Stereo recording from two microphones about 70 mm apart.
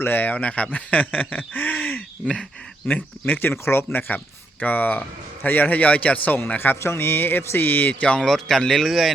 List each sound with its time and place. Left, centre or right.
0.0 s speech: left
2.2 s a man's voice: centre
8.2 s speech: centre